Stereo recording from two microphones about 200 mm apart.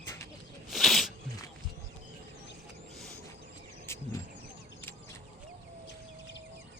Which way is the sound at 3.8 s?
15° left (ahead or behind).